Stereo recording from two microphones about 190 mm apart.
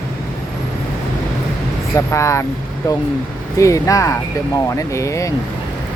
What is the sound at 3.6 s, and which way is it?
Speech, 15° left (ahead or behind).